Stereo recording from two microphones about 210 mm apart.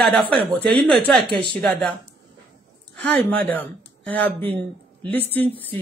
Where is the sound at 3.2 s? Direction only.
10° left (ahead or behind).